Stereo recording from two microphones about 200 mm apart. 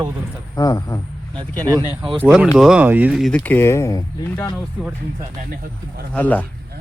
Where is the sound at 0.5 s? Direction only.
15° left (ahead or behind).